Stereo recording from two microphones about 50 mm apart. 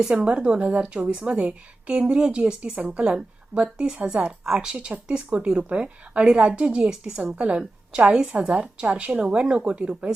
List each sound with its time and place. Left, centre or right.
0.1 s a woman's voice: right
8.4 s a woman's voice: centre